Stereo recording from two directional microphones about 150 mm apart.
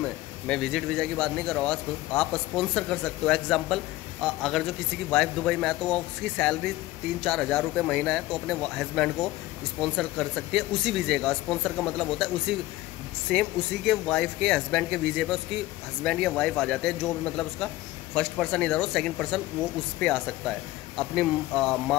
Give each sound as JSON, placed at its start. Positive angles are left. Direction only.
{"t": 0.0, "sound": "a man's voice", "side_deg": 5}